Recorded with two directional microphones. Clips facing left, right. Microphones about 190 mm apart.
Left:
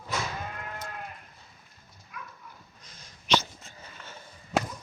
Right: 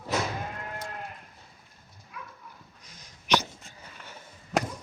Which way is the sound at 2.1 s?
30° right (ahead or behind).